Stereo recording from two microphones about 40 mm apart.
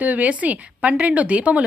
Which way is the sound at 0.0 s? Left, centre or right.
Right.